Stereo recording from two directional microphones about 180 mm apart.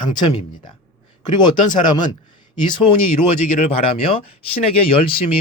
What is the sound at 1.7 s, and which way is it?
Speech, 25° left (ahead or behind).